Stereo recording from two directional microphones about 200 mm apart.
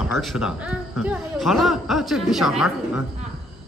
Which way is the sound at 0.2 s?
Centre (ahead or behind).